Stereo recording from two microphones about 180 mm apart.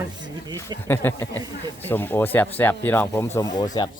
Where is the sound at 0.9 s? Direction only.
10° left (ahead or behind).